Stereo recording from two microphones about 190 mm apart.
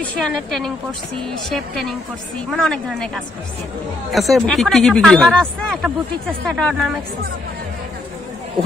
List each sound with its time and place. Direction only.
0.2 s speech: centre (ahead or behind)
4.1 s speech: centre (ahead or behind)